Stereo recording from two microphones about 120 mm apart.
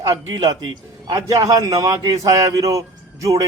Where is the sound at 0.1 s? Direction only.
35° right (ahead or behind).